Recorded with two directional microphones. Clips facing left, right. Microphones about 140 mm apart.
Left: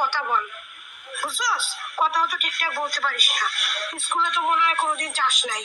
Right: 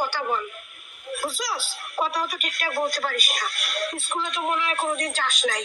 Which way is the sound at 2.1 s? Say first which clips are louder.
Left 3 dB; 40° right (ahead or behind).